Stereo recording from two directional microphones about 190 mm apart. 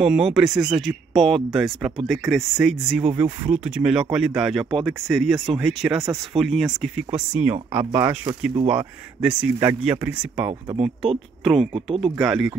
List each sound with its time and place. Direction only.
0.0 s speech: 5° right (ahead or behind)
11.7 s speech: 30° right (ahead or behind)
12.2 s speech: 5° right (ahead or behind)